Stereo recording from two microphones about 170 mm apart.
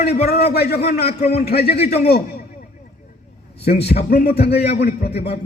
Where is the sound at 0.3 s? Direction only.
70° left (ahead or behind).